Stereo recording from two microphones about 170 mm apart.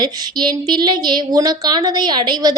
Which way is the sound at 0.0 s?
25° right (ahead or behind).